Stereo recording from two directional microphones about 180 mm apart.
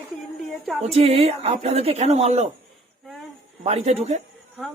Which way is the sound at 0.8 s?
35° right (ahead or behind).